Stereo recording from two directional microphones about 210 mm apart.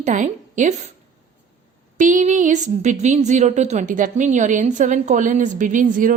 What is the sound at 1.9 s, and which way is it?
Speech, 35° right (ahead or behind).